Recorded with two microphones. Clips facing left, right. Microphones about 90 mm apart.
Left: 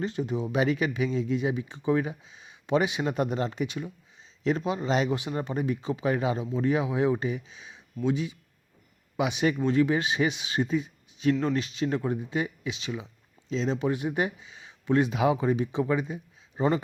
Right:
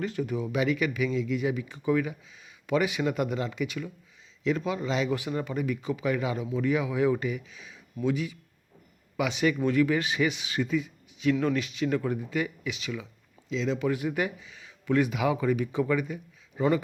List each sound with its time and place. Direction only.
0.0 s speech: 25° left (ahead or behind)